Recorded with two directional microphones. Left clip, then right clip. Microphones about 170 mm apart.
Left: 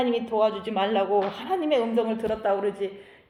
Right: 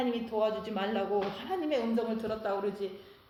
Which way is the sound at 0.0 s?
25° left (ahead or behind).